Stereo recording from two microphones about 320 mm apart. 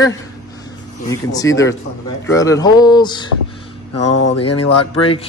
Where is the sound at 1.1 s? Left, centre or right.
Centre.